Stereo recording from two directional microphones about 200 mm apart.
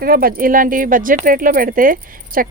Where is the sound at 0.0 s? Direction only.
45° right (ahead or behind).